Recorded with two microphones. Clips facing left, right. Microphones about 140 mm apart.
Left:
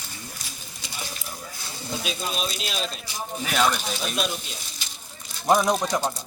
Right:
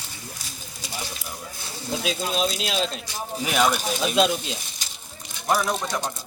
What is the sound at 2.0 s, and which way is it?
Speech, 90° right.